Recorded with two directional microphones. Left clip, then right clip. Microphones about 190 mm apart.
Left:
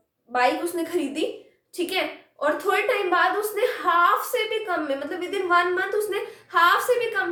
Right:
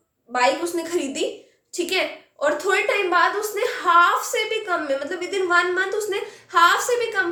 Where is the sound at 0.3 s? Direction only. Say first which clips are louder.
Right 2 dB; 15° right (ahead or behind).